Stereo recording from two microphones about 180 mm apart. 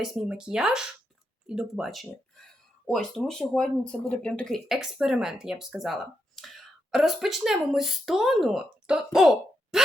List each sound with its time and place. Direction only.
0.0 s speech: centre (ahead or behind)